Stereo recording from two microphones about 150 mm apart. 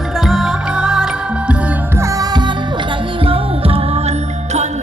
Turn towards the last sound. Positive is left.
turn(degrees=-40)  # may be behind; listen again after turning